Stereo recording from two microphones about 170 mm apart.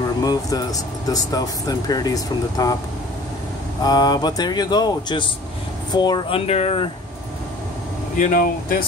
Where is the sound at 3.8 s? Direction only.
25° left (ahead or behind).